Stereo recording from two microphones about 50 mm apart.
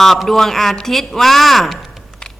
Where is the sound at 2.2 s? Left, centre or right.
Centre.